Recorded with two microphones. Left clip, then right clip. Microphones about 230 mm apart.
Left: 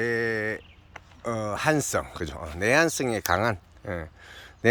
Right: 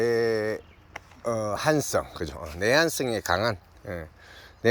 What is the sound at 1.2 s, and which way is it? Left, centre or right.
Speech, centre.